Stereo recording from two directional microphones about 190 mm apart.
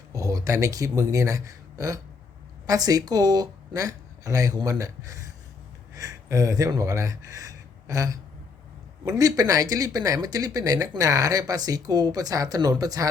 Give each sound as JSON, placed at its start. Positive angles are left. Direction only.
{"t": 0.1, "sound": "a woman's voice", "side_deg": -15}